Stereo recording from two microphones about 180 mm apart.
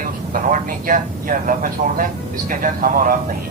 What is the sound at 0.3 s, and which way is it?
A man's voice, 45° right (ahead or behind).